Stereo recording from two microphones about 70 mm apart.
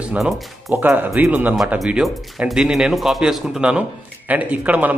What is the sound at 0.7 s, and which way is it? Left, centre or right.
Speech, right.